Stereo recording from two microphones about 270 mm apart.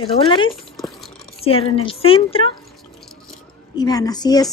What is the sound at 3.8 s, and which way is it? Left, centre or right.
Speech, centre.